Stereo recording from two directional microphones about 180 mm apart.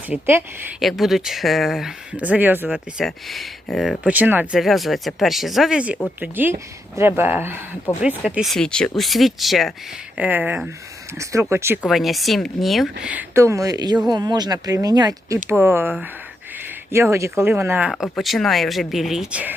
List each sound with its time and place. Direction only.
0.3 s speech: 15° right (ahead or behind)
0.8 s speech: centre (ahead or behind)
11.8 s speech: centre (ahead or behind)
13.1 s speech: 10° right (ahead or behind)